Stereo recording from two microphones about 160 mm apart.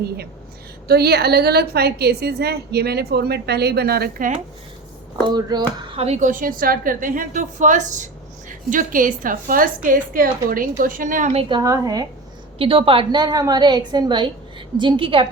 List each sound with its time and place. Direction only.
0.9 s a woman's voice: 85° right; by 4.4 s 65° right (ahead or behind)
5.3 s a woman's voice: 25° right (ahead or behind)
5.9 s a woman's voice: 40° right (ahead or behind)
11.6 s a woman's voice: 20° right (ahead or behind)
12.5 s a woman's voice: 35° right (ahead or behind)